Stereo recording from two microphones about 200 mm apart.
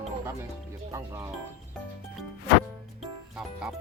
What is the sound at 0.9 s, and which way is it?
Speech, 15° right (ahead or behind).